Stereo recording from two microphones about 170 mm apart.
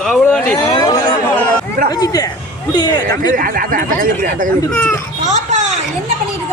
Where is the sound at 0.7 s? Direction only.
25° left (ahead or behind).